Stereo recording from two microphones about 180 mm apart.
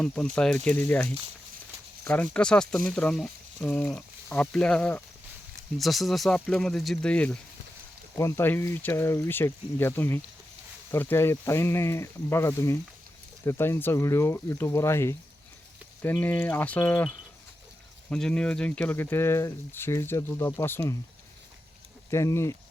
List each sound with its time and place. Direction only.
0.0 s speech: 5° left (ahead or behind)
22.1 s speech: 15° left (ahead or behind)